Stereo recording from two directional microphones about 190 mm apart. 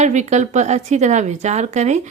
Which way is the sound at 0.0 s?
35° right (ahead or behind).